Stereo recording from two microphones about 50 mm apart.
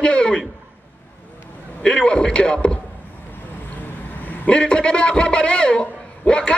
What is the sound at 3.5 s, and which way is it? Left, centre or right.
Vehicle, left.